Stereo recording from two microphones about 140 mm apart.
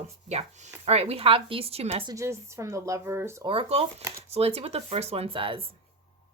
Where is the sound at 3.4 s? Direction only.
45° right (ahead or behind).